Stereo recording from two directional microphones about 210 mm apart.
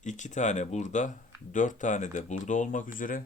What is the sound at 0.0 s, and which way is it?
Speech, 35° left (ahead or behind).